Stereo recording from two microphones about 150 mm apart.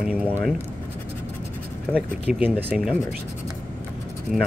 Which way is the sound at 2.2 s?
10° right (ahead or behind).